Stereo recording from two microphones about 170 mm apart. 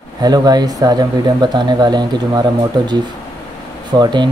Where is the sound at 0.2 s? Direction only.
25° right (ahead or behind).